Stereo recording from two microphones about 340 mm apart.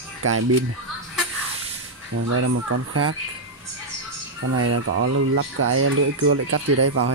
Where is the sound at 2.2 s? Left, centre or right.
Right.